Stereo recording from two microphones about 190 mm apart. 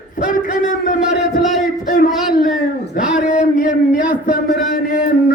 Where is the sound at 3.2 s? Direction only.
45° left (ahead or behind).